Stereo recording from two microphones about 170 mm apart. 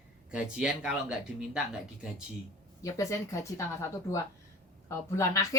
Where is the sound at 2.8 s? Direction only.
20° left (ahead or behind).